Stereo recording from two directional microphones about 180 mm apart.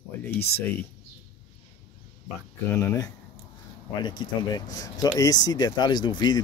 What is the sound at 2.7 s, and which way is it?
Speech, 15° left (ahead or behind).